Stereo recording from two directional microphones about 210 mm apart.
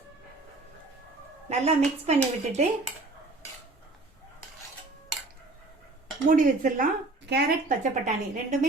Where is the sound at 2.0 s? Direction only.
30° right (ahead or behind).